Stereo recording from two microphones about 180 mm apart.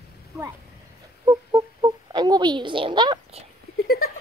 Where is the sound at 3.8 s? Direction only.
55° left (ahead or behind).